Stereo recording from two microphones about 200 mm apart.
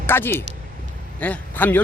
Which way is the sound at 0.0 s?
10° left (ahead or behind).